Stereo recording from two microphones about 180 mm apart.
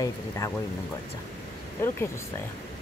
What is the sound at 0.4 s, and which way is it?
Speech, 20° left (ahead or behind).